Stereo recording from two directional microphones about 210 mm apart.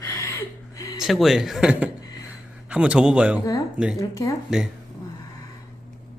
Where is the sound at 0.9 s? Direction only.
Centre (ahead or behind).